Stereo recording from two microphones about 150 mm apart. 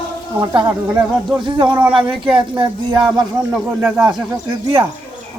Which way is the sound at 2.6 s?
30° right (ahead or behind).